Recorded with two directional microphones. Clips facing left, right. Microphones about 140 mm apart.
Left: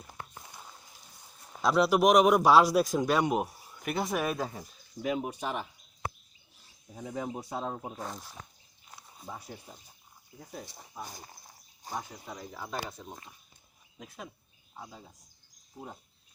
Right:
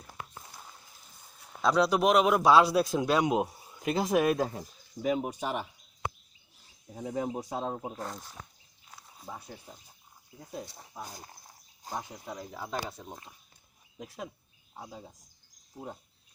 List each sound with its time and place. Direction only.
1.6 s speech: 5° left (ahead or behind)
2.9 s speech: 5° right (ahead or behind)
5.0 s speech: centre (ahead or behind)
5.3 s speech: 10° right (ahead or behind)
6.9 s speech: 20° right (ahead or behind)
7.9 s speech: 5° left (ahead or behind)
9.0 s a sound: 5° right (ahead or behind)
10.4 s speech: 15° right (ahead or behind)
12.0 s speech: 5° right (ahead or behind)
14.8 s speech: 15° right (ahead or behind)